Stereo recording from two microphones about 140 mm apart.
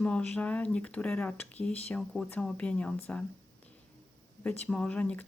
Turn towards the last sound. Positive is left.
turn(degrees=10)  # may be behind; listen again after turning